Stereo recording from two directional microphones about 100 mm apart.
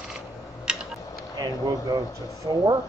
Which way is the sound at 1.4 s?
40° right (ahead or behind).